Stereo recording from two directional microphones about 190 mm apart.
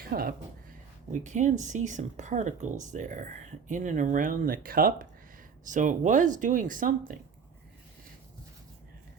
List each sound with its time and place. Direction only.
0.0 s speech: 50° right (ahead or behind)
1.2 s speech: 40° right (ahead or behind)